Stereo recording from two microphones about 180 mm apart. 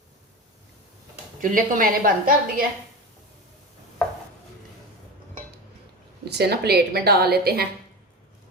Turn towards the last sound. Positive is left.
turn(degrees=-60)  # may be behind; listen again after turning